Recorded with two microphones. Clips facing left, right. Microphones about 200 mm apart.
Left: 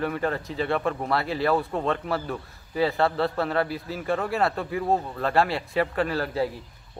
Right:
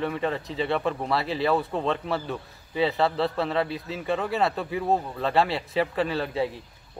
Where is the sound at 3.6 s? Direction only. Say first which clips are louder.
Left 1 dB; 25° right (ahead or behind).